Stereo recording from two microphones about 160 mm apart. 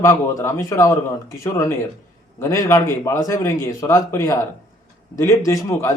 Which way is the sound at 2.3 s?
20° left (ahead or behind).